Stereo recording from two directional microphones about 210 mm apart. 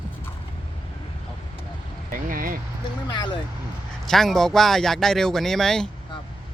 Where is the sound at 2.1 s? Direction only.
40° right (ahead or behind).